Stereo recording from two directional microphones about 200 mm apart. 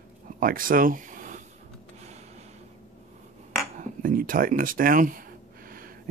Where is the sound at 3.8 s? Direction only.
45° right (ahead or behind).